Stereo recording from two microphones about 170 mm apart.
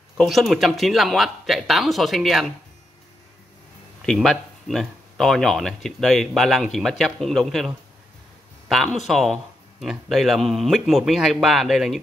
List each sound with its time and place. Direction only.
0.2 s speech: centre (ahead or behind)
4.0 s speech: 5° left (ahead or behind)